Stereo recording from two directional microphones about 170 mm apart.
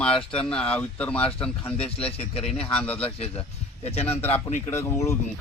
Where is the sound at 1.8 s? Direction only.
35° left (ahead or behind).